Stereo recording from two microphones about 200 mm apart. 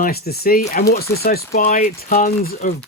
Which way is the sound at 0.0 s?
50° left (ahead or behind).